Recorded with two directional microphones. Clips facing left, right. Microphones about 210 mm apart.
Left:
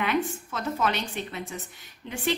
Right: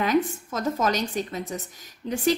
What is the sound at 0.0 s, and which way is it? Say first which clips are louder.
A woman's voice: right 4 dB; 40° right (ahead or behind).